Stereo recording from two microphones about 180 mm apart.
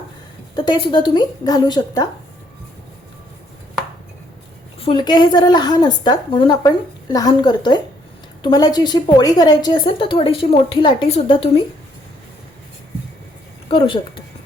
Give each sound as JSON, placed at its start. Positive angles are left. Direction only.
{"t": 0.5, "sound": "a woman's voice", "side_deg": 25}
{"t": 4.8, "sound": "a woman's voice", "side_deg": 25}
{"t": 13.7, "sound": "speech", "side_deg": 30}